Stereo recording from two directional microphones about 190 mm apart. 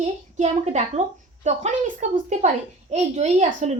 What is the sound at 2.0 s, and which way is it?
A woman's voice, 40° right (ahead or behind).